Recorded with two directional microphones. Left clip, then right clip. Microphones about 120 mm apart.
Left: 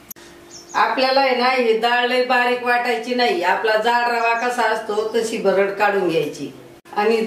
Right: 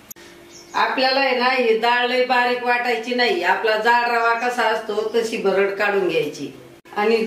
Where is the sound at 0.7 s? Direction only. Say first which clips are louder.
Left 2 dB; 5° left (ahead or behind).